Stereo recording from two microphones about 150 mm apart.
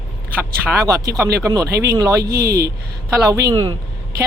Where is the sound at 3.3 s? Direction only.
25° right (ahead or behind).